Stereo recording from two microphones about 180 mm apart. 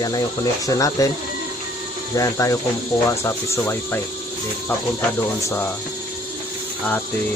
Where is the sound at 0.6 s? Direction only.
20° left (ahead or behind).